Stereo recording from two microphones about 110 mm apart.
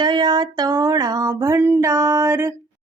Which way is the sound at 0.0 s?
45° right (ahead or behind).